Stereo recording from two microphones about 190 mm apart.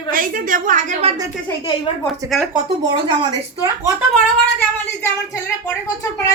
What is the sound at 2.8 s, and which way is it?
Speech, 20° right (ahead or behind).